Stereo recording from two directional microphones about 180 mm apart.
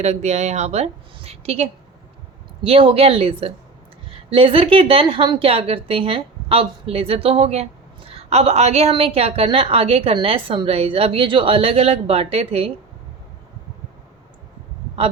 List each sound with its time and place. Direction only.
0.0 s a woman's voice: 40° right (ahead or behind)
2.6 s a woman's voice: 30° right (ahead or behind)